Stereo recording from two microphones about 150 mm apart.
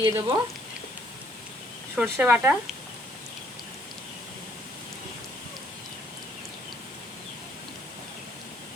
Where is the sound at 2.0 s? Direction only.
10° right (ahead or behind).